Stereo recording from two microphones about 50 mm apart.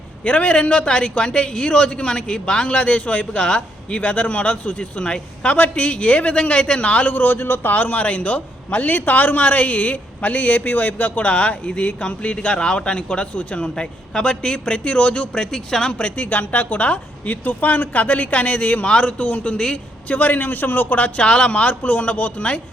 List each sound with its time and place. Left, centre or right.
0.3 s a man's voice: left
7.1 s a man's voice: left
7.7 s a man's voice: left
21.0 s a man's voice: centre